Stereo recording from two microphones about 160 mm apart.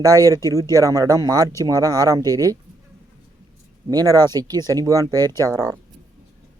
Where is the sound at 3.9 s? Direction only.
20° right (ahead or behind).